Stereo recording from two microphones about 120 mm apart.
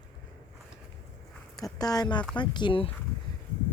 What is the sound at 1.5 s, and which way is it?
Speech, 30° left (ahead or behind).